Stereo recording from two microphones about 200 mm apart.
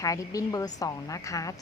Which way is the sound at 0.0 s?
15° left (ahead or behind).